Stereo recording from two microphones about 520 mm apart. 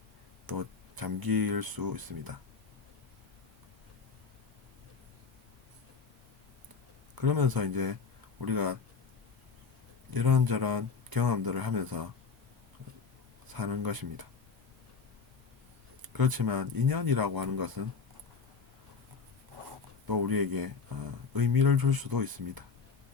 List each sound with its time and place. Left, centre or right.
0.4 s speech: right
7.2 s speech: right
10.1 s speech: right
13.5 s speech: right
16.0 s speech: right
20.1 s speech: right